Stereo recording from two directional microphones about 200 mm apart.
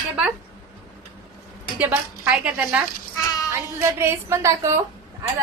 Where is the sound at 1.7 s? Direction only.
5° right (ahead or behind).